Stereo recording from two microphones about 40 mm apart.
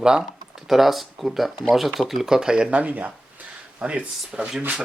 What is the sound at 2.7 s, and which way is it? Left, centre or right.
Speech, right.